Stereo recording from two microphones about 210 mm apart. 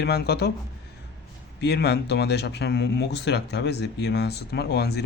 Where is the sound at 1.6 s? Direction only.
50° left (ahead or behind).